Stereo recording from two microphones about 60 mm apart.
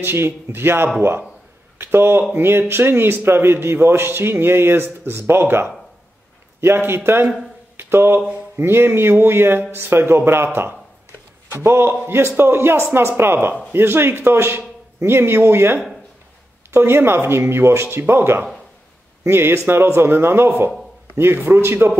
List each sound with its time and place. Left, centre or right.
0.0 s a man's voice: right